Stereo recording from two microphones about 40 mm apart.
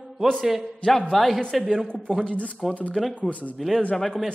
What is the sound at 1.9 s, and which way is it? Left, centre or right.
Speech, left.